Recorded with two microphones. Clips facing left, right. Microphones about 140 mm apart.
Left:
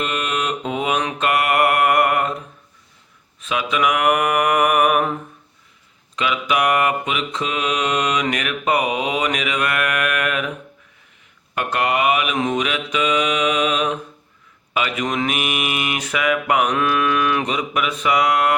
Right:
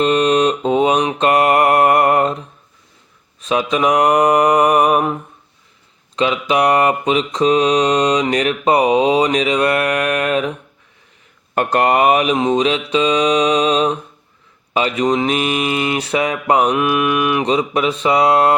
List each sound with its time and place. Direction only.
0.0 s mantra: 35° right (ahead or behind)
3.4 s mantra: 35° right (ahead or behind)
6.1 s mantra: 30° right (ahead or behind)
11.5 s mantra: 40° right (ahead or behind)
16.7 s mantra: 15° right (ahead or behind)
17.4 s mantra: 30° right (ahead or behind)